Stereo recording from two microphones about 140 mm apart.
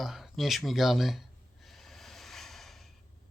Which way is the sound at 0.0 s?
Centre (ahead or behind).